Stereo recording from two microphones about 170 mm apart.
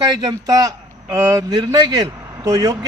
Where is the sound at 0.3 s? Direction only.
20° right (ahead or behind).